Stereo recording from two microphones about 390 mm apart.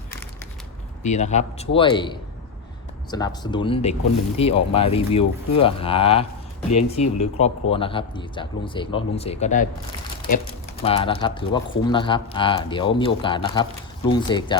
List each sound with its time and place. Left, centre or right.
1.0 s speech: centre